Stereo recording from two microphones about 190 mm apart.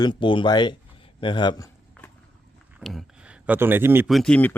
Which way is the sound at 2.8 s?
Centre (ahead or behind).